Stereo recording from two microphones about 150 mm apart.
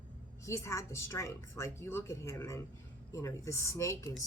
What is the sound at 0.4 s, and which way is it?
A woman's voice, 20° left (ahead or behind).